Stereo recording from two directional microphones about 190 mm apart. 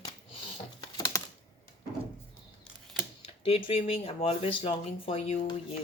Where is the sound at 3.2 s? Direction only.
30° left (ahead or behind).